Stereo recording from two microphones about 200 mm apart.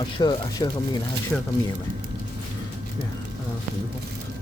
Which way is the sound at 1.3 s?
5° left (ahead or behind).